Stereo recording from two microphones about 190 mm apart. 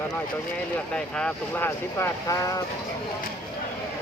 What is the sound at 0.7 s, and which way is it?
Speech, 5° left (ahead or behind).